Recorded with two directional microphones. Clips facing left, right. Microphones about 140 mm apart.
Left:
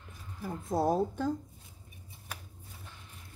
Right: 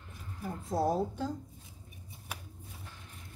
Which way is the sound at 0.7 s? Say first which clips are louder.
Left 2 dB; 55° left (ahead or behind).